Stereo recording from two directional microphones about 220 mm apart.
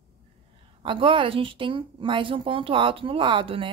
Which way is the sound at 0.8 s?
25° right (ahead or behind).